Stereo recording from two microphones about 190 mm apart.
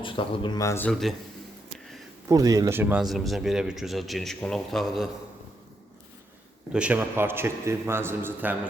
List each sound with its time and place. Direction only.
0.0 s speech: 25° left (ahead or behind); by 1.1 s 5° left (ahead or behind)
2.3 s a man's voice: 20° right (ahead or behind)
3.0 s speech: centre (ahead or behind)
6.7 s a man's voice: 10° right (ahead or behind)